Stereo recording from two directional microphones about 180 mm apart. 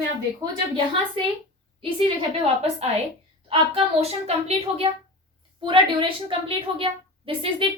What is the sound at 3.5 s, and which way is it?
A woman's voice, 30° right (ahead or behind).